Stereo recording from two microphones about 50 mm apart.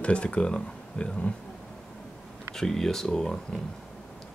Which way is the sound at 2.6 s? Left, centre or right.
Centre.